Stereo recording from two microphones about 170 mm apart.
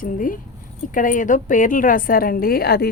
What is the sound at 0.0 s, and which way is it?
A woman's voice, 55° left (ahead or behind).